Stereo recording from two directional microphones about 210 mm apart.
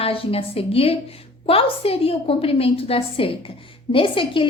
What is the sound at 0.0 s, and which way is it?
A woman's voice, 25° left (ahead or behind).